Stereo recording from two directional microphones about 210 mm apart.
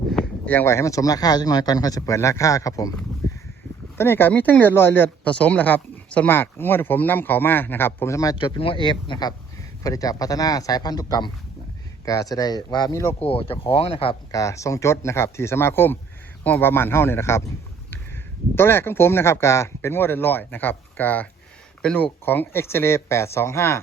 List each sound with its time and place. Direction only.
0.1 s speech: 5° left (ahead or behind)
3.9 s speech: 10° left (ahead or behind)
13.2 s speech: 25° left (ahead or behind)
18.5 s speech: 10° left (ahead or behind)